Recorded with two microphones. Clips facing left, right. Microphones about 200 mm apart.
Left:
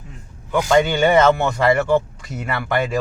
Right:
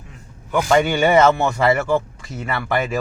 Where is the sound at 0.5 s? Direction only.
10° right (ahead or behind).